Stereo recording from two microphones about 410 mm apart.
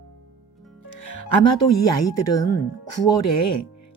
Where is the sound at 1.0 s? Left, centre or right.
Left.